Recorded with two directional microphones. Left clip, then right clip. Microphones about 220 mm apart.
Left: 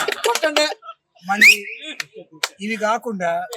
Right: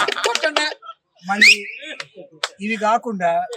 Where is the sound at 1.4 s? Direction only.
35° left (ahead or behind).